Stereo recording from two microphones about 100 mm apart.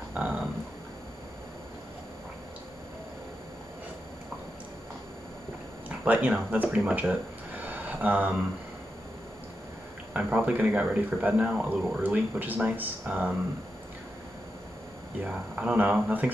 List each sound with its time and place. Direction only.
0.1 s a sound: 15° right (ahead or behind)
5.9 s speech: 15° right (ahead or behind)
10.1 s speech: 15° right (ahead or behind)
15.2 s speech: 10° right (ahead or behind)